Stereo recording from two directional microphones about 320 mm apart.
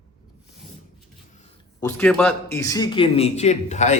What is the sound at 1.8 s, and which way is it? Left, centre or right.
A man's voice, centre.